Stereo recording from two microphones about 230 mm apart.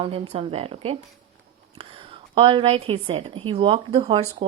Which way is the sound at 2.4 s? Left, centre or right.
Right.